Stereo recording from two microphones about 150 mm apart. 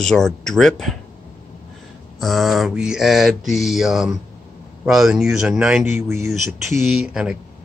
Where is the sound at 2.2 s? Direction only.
Centre (ahead or behind).